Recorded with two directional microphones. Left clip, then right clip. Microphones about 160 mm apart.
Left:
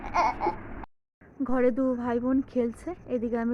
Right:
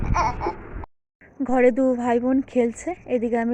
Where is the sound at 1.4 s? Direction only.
20° right (ahead or behind).